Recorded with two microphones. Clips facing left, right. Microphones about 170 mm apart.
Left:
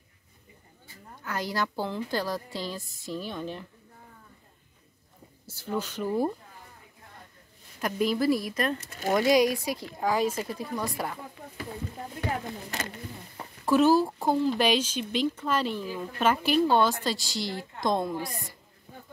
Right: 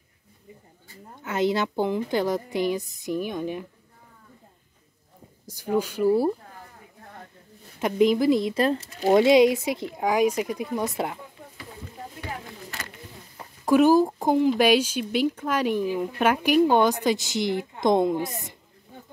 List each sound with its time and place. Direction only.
1.2 s a woman's voice: 20° right (ahead or behind)
5.5 s speech: 15° right (ahead or behind)
7.8 s a woman's voice: 20° right (ahead or behind)
13.7 s speech: 15° right (ahead or behind)